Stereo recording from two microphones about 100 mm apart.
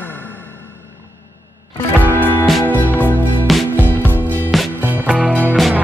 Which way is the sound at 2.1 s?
20° left (ahead or behind).